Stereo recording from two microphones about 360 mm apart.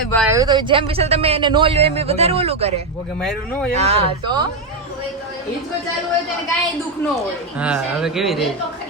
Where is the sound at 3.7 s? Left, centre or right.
Centre.